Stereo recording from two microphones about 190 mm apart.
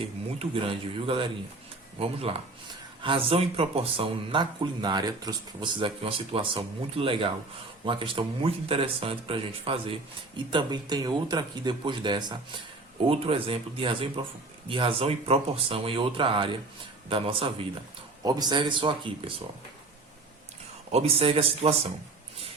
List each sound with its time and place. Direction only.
0.3 s speech: 30° right (ahead or behind)
20.9 s speech: 30° right (ahead or behind)